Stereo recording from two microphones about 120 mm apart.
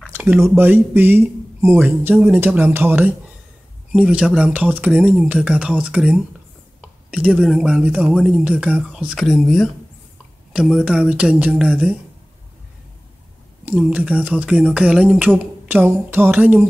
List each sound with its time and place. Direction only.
0.1 s speech: 15° right (ahead or behind)
13.7 s speech: 10° right (ahead or behind)